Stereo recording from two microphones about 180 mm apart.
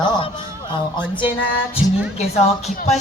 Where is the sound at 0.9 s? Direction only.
25° left (ahead or behind).